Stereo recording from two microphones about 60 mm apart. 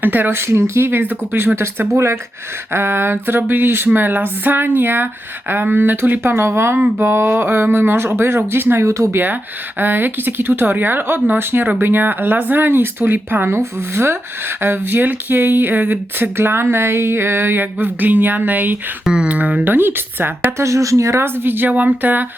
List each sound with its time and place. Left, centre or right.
0.0 s speech: right
19.0 s speech: centre; by 20.5 s right
20.6 s speech: right
21.3 s speech: right